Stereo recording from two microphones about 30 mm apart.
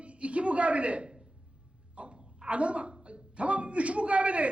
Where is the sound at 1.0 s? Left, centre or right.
Right.